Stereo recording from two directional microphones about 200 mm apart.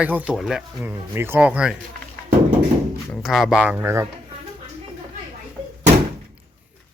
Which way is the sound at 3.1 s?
Centre (ahead or behind).